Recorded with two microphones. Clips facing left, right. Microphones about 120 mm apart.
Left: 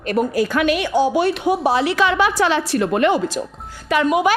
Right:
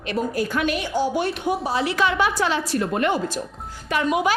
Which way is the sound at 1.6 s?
80° left.